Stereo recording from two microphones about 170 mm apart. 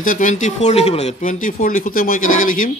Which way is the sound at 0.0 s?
50° left (ahead or behind).